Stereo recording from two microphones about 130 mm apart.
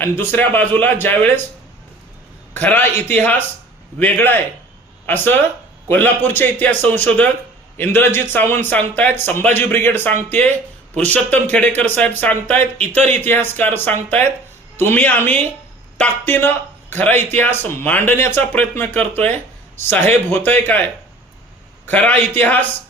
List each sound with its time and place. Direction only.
0.0 s a man's voice: 15° left (ahead or behind)
2.5 s a man's voice: 15° left (ahead or behind)
21.8 s a man's voice: 15° left (ahead or behind)